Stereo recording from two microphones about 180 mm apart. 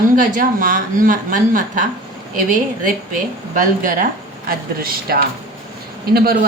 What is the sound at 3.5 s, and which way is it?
A man's voice, 50° right (ahead or behind).